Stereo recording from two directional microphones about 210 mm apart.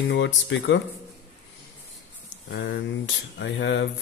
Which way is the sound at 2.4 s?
55° left (ahead or behind).